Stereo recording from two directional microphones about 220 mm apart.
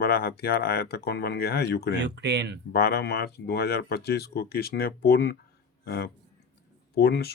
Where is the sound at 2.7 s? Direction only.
45° left (ahead or behind).